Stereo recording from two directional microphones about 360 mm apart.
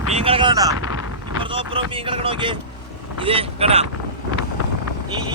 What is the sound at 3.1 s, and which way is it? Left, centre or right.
Speech, centre.